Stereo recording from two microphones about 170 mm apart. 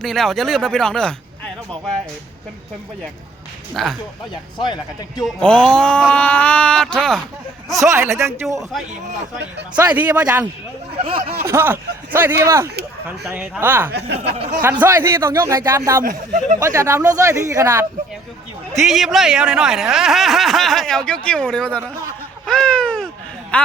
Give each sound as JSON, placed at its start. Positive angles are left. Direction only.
{"t": 0.0, "sound": "speech", "side_deg": 0}
{"t": 3.8, "sound": "speech", "side_deg": 0}
{"t": 4.5, "sound": "speech", "side_deg": 25}
{"t": 5.1, "sound": "speech", "side_deg": 0}
{"t": 7.8, "sound": "speech", "side_deg": -15}
{"t": 9.7, "sound": "speech", "side_deg": -10}
{"t": 11.0, "sound": "speech", "side_deg": -35}
{"t": 11.4, "sound": "speech", "side_deg": -15}
{"t": 13.9, "sound": "speech", "side_deg": -80}
{"t": 14.6, "sound": "speech", "side_deg": -10}
{"t": 18.8, "sound": "speech", "side_deg": 0}
{"t": 22.4, "sound": "a sound", "side_deg": 5}